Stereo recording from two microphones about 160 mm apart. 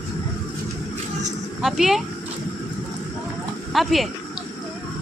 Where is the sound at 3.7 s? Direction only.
Centre (ahead or behind).